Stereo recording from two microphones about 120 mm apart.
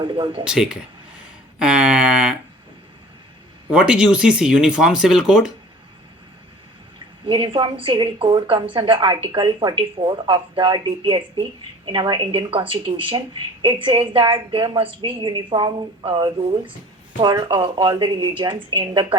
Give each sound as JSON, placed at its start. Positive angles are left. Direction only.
{"t": 0.0, "sound": "speech", "side_deg": -45}
{"t": 0.4, "sound": "speech", "side_deg": -5}
{"t": 1.5, "sound": "a sound", "side_deg": -5}
{"t": 3.7, "sound": "speech", "side_deg": -10}
{"t": 7.3, "sound": "a woman's voice", "side_deg": -45}